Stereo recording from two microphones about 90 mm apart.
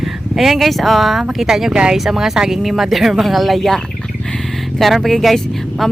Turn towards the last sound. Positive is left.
turn(degrees=0)  # may be behind; listen again after turning